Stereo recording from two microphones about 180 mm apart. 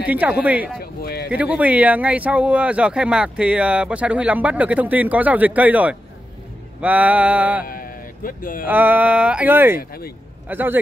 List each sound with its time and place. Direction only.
0.1 s speech: 10° right (ahead or behind)
0.7 s speech: 60° left (ahead or behind)
1.3 s speech: 10° right (ahead or behind)
7.6 s a sound: 50° left (ahead or behind)
8.6 s speech: 10° right (ahead or behind)
9.8 s speech: 60° left (ahead or behind)
10.5 s speech: 10° right (ahead or behind)